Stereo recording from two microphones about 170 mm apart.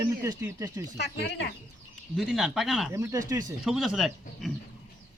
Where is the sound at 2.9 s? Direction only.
20° right (ahead or behind).